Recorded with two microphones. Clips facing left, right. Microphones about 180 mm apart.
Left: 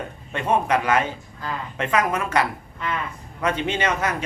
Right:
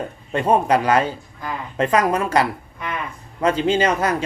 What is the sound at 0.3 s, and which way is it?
A man's voice, 35° right (ahead or behind).